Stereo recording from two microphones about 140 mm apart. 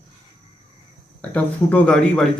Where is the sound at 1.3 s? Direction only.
10° left (ahead or behind).